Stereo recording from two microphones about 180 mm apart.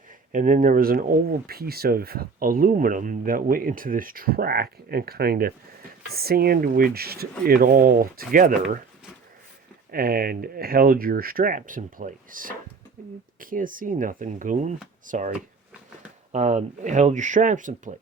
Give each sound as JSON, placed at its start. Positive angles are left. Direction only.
{"t": 0.3, "sound": "speech", "side_deg": -50}
{"t": 9.9, "sound": "speech", "side_deg": -55}
{"t": 16.3, "sound": "speech", "side_deg": -40}